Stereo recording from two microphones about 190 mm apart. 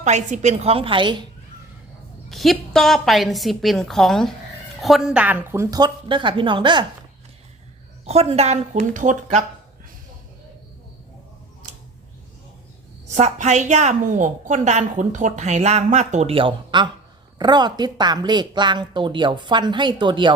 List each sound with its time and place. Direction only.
0.0 s a woman's voice: 40° right (ahead or behind)
2.3 s a woman's voice: centre (ahead or behind); by 6.8 s 25° right (ahead or behind)
8.0 s a woman's voice: 35° right (ahead or behind)
13.1 s a woman's voice: 40° right (ahead or behind)